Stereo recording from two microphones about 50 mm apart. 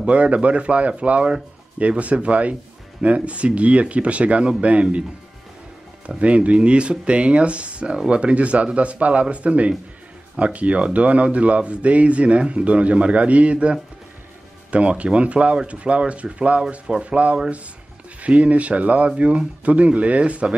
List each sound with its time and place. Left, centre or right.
0.0 s speech: right
6.0 s speech: right